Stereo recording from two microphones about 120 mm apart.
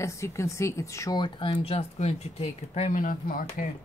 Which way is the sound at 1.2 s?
45° left (ahead or behind).